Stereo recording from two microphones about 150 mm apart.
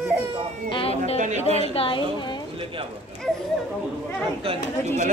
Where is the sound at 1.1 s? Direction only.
55° right (ahead or behind).